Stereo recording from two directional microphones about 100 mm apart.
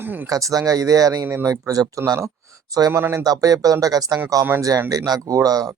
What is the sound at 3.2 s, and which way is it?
Speech, 40° right (ahead or behind).